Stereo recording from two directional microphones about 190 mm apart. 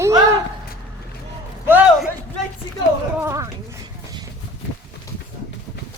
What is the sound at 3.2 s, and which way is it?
Speech, 15° right (ahead or behind).